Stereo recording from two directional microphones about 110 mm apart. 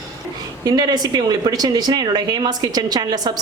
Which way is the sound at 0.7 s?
35° right (ahead or behind).